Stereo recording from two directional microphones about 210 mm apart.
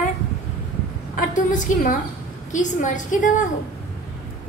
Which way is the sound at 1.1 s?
40° left (ahead or behind).